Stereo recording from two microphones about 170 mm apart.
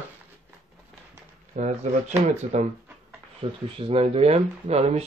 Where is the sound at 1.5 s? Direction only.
45° right (ahead or behind).